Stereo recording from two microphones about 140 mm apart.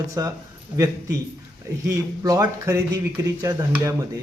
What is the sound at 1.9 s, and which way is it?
A man's voice, 25° right (ahead or behind).